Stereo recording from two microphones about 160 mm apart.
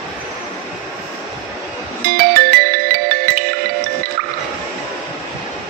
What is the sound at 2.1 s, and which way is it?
Music, 70° right (ahead or behind).